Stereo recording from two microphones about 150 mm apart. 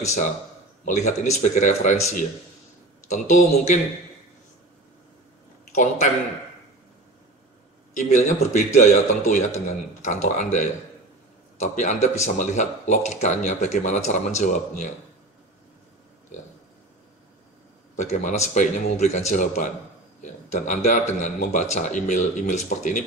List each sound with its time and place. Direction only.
0.0 s speech: 50° left (ahead or behind)
7.9 s speech: 50° left (ahead or behind)
17.9 s a man's voice: 55° left (ahead or behind)